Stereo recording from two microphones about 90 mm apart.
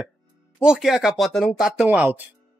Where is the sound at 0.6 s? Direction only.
5° right (ahead or behind).